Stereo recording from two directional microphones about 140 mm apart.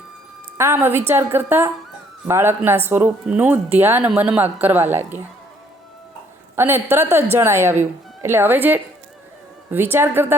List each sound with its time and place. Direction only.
0.5 s speech: 20° right (ahead or behind)
6.6 s speech: 15° right (ahead or behind)